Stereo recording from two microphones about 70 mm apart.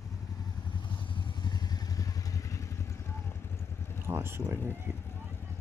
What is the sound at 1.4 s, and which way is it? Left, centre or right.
Vehicle, left.